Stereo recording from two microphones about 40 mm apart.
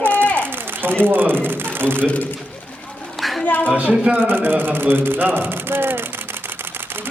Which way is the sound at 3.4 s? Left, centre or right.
Left.